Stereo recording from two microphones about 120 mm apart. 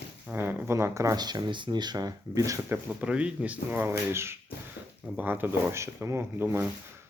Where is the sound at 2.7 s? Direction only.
10° right (ahead or behind).